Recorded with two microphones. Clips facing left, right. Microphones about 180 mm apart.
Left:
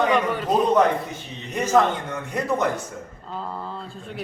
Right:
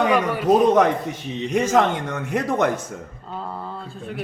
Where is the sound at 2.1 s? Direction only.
90° right.